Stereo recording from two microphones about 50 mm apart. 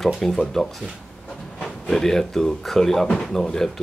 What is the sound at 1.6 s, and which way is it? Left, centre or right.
A man's voice, centre.